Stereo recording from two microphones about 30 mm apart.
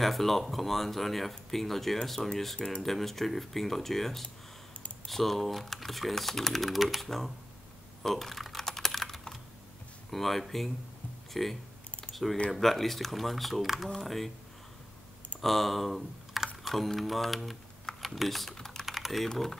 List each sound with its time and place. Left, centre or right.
0.0 s speech: centre
6.8 s speech: centre
7.1 s speech: centre
8.5 s typing: centre
10.1 s speech: centre
15.4 s speech: centre
18.6 s typing: centre
18.9 s typing: centre
19.3 s speech: centre